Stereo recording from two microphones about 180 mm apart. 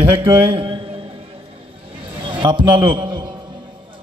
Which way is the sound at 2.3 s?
25° right (ahead or behind).